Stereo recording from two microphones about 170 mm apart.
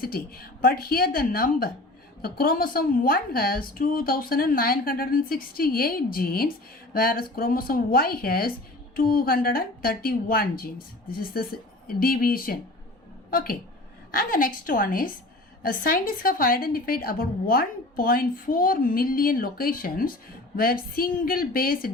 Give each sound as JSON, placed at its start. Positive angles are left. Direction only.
{"t": 0.0, "sound": "a woman's voice", "side_deg": 60}